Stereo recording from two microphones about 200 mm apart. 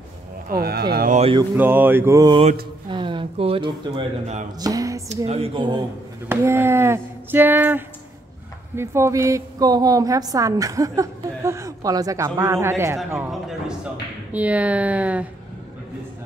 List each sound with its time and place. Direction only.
0.5 s speech: 50° right (ahead or behind)
1.6 s a woman's voice: 10° right (ahead or behind)
5.1 s a woman's voice: 30° right (ahead or behind); by 13.3 s 10° right (ahead or behind)
13.3 s a woman's voice: centre (ahead or behind)